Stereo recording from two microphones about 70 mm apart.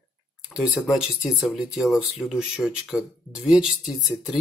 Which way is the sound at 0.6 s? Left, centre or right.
Centre.